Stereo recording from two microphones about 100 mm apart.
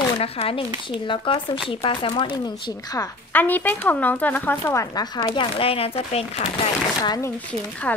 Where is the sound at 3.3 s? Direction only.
15° left (ahead or behind).